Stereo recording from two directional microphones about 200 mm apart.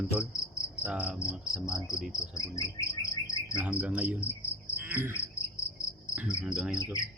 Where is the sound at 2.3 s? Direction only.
15° left (ahead or behind).